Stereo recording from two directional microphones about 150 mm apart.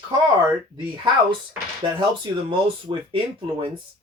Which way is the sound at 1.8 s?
30° right (ahead or behind).